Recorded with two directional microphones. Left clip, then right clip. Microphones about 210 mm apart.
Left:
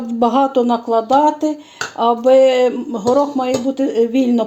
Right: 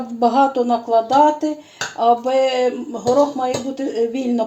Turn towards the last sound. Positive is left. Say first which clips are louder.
# left 4 dB
turn(degrees=45)  # may be behind; listen again after turning